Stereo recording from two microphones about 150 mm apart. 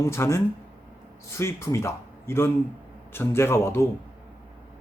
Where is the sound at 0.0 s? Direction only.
20° left (ahead or behind).